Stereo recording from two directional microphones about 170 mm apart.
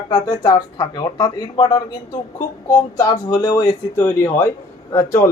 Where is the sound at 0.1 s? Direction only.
25° left (ahead or behind).